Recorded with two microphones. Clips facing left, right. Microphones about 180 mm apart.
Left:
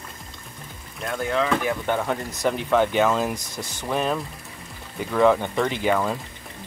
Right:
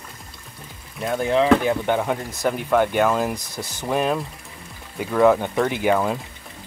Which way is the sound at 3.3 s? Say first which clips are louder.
Right 1 dB; 15° left (ahead or behind).